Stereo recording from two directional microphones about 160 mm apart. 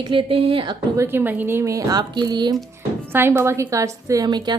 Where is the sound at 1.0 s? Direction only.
15° right (ahead or behind).